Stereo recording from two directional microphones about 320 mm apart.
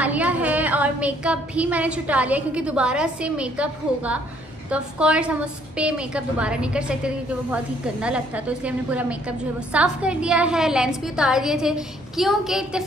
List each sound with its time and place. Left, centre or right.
0.0 s a woman's voice: centre